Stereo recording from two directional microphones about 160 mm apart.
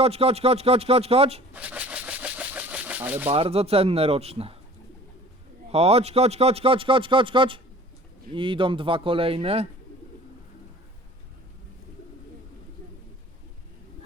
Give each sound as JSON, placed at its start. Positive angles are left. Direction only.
{"t": 0.0, "sound": "a man's voice", "side_deg": -40}
{"t": 1.5, "sound": "engine", "side_deg": -10}
{"t": 3.2, "sound": "a man's voice", "side_deg": -40}
{"t": 5.7, "sound": "a man's voice", "side_deg": -40}